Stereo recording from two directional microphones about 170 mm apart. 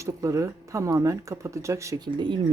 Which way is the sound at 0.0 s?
20° right (ahead or behind).